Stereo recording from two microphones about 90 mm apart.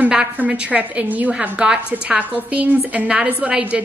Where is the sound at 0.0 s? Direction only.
15° right (ahead or behind).